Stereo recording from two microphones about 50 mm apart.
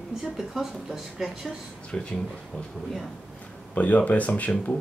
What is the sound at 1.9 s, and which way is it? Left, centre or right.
Speech, centre.